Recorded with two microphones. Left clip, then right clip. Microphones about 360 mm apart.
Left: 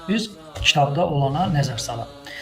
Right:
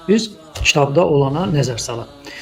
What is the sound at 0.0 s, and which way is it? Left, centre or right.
A man's voice, centre.